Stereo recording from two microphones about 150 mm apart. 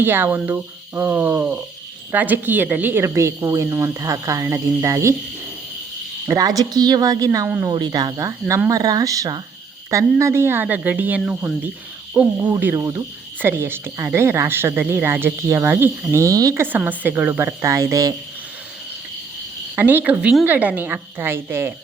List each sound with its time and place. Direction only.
0.0 s a woman's voice: 15° right (ahead or behind)
6.2 s a woman's voice: 25° right (ahead or behind)
7.3 s speech: 15° right (ahead or behind)
7.7 s a woman's voice: 25° right (ahead or behind)
19.7 s speech: 15° right (ahead or behind)